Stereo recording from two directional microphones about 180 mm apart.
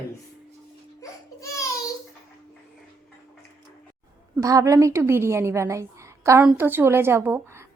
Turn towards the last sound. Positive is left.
turn(degrees=-15)  # may be behind; listen again after turning